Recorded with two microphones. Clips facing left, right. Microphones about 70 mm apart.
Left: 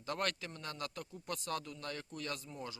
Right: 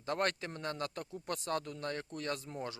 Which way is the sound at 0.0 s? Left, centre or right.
Right.